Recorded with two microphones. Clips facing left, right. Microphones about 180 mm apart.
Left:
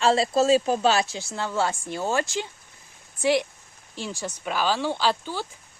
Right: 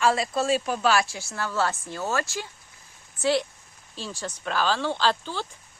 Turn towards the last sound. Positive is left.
turn(degrees=10)  # may be behind; listen again after turning